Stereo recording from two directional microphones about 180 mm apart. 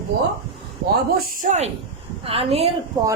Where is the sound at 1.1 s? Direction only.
45° right (ahead or behind).